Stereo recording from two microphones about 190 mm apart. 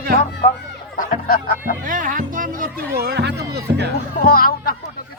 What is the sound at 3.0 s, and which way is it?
Speech, 60° right (ahead or behind).